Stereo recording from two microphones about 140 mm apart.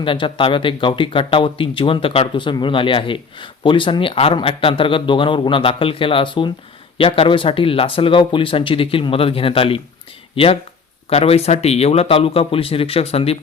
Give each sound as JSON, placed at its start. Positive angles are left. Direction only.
{"t": 0.0, "sound": "speech", "side_deg": 40}